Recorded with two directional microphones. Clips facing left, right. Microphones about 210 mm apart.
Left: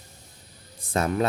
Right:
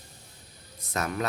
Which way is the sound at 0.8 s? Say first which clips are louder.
Left 6 dB; 30° left (ahead or behind).